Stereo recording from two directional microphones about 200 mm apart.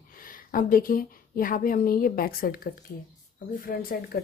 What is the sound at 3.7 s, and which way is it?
Speech, 45° left (ahead or behind).